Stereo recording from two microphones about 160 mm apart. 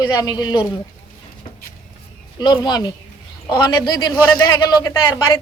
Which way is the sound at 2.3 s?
25° left (ahead or behind).